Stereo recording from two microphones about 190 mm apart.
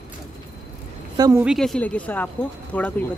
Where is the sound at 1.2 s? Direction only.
15° right (ahead or behind).